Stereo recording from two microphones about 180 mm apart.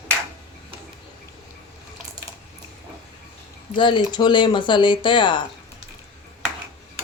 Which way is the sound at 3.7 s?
25° left (ahead or behind).